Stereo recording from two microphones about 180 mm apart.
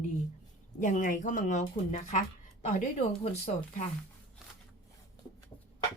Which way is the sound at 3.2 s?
35° left (ahead or behind).